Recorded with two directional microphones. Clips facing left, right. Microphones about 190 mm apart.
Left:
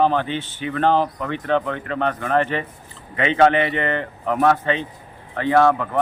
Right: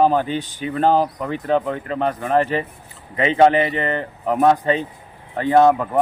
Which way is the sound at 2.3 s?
35° right (ahead or behind).